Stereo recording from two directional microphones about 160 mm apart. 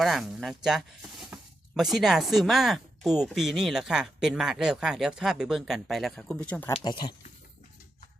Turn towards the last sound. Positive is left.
turn(degrees=25)  # may be behind; listen again after turning